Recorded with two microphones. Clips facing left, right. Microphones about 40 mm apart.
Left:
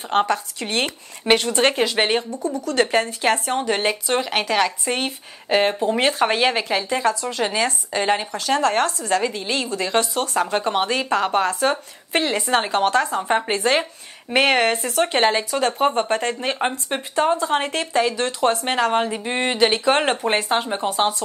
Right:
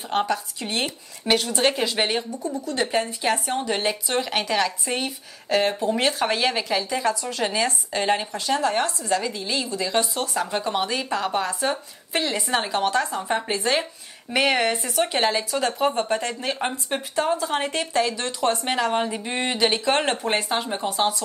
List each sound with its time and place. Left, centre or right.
0.3 s speech: left
1.3 s speech: left
2.5 s speech: left
2.8 s speech: left
3.2 s speech: left
4.9 s speech: left
7.9 s speech: centre
8.3 s speech: left
9.1 s speech: left
9.9 s speech: left
12.3 s speech: left